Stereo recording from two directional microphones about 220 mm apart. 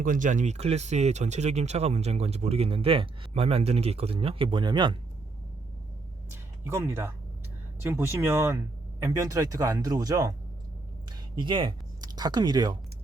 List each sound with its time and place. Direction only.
0.0 s speech: 35° right (ahead or behind); by 4.9 s 20° right (ahead or behind)
6.3 s speech: 10° right (ahead or behind)
11.3 s speech: 20° right (ahead or behind)